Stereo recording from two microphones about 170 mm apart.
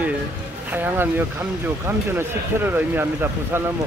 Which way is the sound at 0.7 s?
10° right (ahead or behind).